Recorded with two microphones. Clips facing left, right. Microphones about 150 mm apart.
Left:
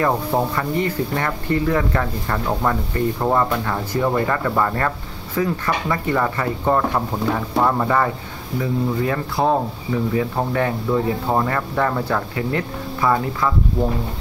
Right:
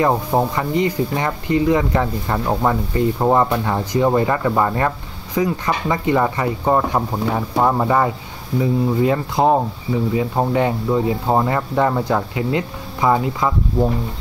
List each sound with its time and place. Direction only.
0.0 s speech: 20° right (ahead or behind)